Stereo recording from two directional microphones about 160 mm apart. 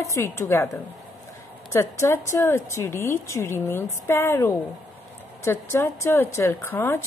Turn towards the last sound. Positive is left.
turn(degrees=15)  # may be behind; listen again after turning